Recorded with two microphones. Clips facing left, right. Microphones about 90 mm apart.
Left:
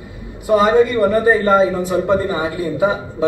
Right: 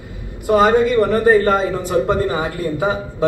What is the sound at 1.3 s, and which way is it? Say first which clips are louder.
Speech: left 2 dB; 60° right (ahead or behind).